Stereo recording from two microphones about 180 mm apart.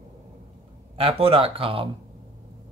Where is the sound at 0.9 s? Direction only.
30° right (ahead or behind).